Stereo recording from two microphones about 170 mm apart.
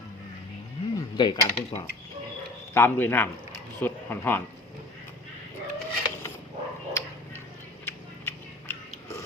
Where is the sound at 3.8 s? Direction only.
10° left (ahead or behind).